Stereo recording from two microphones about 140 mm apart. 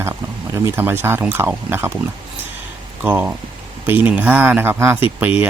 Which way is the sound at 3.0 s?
10° right (ahead or behind).